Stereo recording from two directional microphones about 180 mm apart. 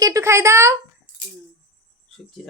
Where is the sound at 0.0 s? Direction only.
15° right (ahead or behind).